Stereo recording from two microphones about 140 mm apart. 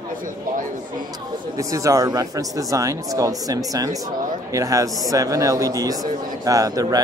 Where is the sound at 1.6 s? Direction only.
25° right (ahead or behind).